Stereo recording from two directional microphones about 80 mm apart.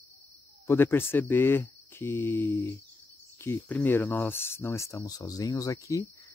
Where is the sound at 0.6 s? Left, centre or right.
Left.